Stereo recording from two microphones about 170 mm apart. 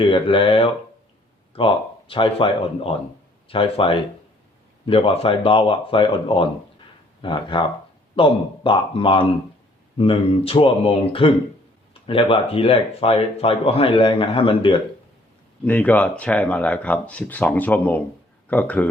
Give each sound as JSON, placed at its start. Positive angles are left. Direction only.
{"t": 0.0, "sound": "speech", "side_deg": 30}
{"t": 15.6, "sound": "speech", "side_deg": 10}